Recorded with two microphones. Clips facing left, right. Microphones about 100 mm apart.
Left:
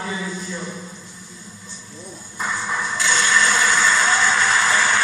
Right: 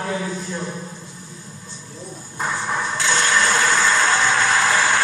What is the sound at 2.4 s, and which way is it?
Music, 45° right (ahead or behind).